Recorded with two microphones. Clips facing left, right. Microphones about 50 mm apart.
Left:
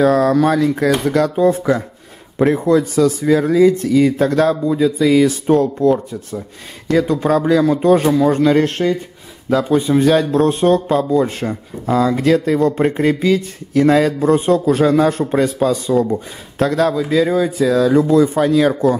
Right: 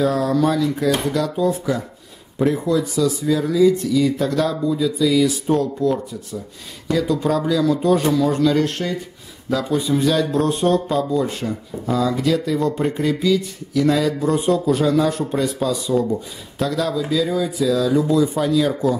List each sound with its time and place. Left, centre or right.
0.0 s speech: left